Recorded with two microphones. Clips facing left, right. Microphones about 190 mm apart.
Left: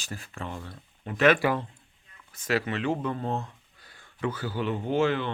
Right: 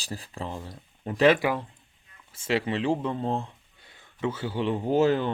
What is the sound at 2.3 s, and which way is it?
Speech, 25° right (ahead or behind).